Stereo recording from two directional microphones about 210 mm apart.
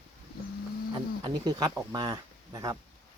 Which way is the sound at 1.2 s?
20° right (ahead or behind).